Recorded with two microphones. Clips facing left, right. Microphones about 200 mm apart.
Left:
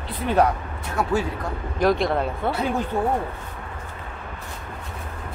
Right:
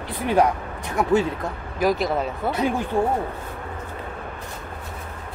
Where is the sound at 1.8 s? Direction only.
Centre (ahead or behind).